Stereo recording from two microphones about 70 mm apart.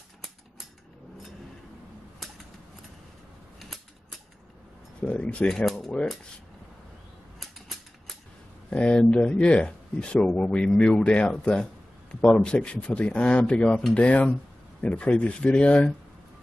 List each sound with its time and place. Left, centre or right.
3.5 s a sound: centre
5.0 s speech: centre
5.7 s mechanisms: centre
7.3 s mechanisms: centre
8.6 s speech: centre